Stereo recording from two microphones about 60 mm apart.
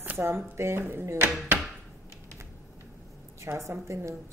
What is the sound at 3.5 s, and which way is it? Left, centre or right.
Speech, right.